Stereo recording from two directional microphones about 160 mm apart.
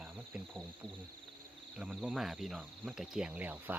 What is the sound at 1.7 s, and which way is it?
Speech, 5° right (ahead or behind).